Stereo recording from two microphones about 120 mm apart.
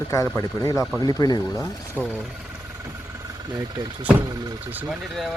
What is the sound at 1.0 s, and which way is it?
Speech, 35° left (ahead or behind).